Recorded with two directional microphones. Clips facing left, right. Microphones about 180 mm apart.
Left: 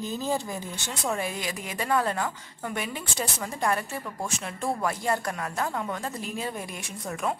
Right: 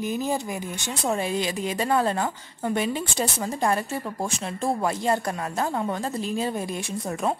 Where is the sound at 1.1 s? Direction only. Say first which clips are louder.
Right 5 dB; 25° right (ahead or behind).